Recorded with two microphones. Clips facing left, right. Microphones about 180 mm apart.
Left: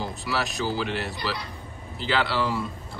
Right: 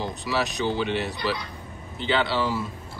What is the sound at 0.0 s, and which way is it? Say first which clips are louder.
A man's voice: right 2 dB; centre (ahead or behind).